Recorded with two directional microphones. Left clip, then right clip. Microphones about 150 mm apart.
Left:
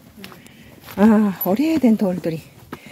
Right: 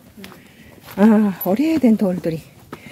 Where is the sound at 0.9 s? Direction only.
Centre (ahead or behind).